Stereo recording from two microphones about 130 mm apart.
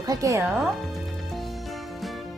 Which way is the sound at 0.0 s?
25° right (ahead or behind).